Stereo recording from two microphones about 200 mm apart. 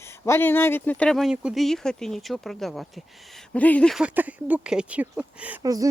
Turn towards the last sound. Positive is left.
turn(degrees=-20)  # may be behind; listen again after turning